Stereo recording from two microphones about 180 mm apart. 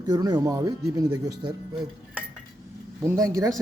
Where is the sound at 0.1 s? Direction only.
25° right (ahead or behind).